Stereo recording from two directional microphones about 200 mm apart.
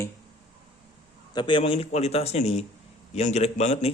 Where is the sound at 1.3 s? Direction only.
25° left (ahead or behind).